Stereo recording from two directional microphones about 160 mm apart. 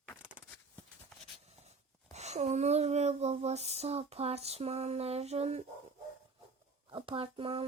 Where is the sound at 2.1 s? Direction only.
45° right (ahead or behind).